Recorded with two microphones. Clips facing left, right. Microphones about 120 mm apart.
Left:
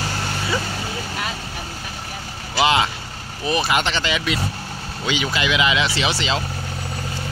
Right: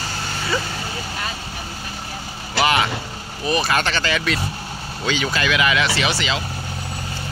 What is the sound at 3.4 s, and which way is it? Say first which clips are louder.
Speech: even; 20° left (ahead or behind).